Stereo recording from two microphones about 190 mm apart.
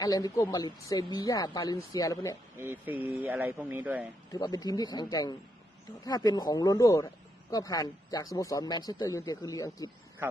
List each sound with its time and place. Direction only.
0.0 s speech: 20° left (ahead or behind)
2.5 s speech: 10° right (ahead or behind)
4.3 s speech: 20° left (ahead or behind)